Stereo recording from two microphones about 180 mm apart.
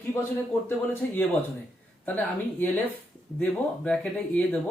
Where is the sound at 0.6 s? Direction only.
10° left (ahead or behind).